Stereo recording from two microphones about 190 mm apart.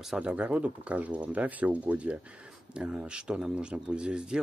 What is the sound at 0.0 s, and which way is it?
Speech, 5° right (ahead or behind).